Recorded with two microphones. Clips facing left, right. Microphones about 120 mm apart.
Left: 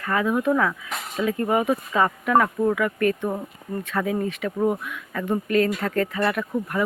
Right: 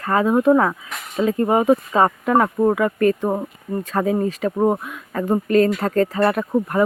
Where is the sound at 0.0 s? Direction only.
35° right (ahead or behind).